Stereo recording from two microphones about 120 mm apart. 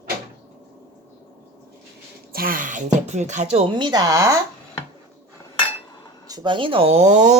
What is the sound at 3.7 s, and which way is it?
Speech, 35° right (ahead or behind).